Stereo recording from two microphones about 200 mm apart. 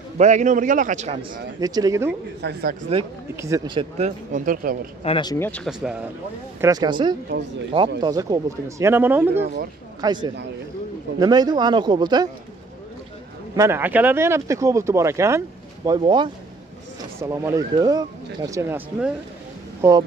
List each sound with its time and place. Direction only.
0.2 s a man's voice: 35° right (ahead or behind)
1.6 s speech: 20° right (ahead or behind)
2.4 s speech: 55° right (ahead or behind)
2.9 s speech: 30° right (ahead or behind)
3.3 s speech: 15° right (ahead or behind)
4.3 s speech: 45° right (ahead or behind)
5.0 s speech: 25° left (ahead or behind)
5.5 s speech: centre (ahead or behind)
6.6 s speech: 20° right (ahead or behind)
10.0 s speech: 20° right (ahead or behind)
13.6 s speech: 10° right (ahead or behind)
19.8 s speech: 20° right (ahead or behind)